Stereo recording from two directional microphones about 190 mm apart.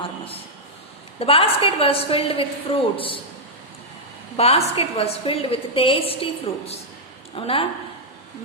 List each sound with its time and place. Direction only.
1.2 s a woman's voice: 30° left (ahead or behind)
4.4 s a woman's voice: 30° left (ahead or behind)